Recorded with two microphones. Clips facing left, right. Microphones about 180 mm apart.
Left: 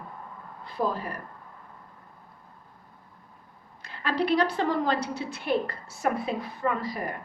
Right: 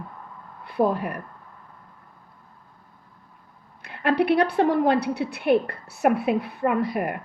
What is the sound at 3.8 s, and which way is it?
A woman's voice, 60° right (ahead or behind).